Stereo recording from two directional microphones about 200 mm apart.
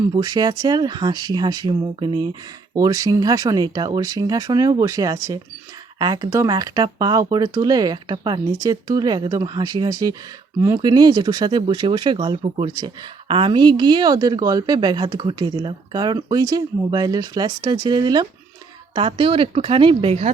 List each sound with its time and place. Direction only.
0.2 s speech: 20° right (ahead or behind)